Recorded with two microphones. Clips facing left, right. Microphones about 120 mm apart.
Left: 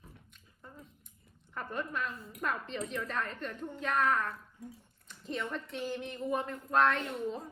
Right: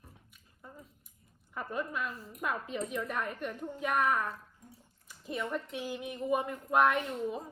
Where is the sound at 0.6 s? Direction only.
5° right (ahead or behind).